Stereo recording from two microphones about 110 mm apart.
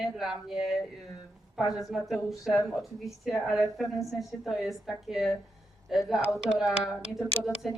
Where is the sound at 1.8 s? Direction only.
Centre (ahead or behind).